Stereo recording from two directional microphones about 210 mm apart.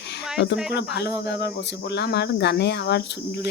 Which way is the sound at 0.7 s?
55° left (ahead or behind).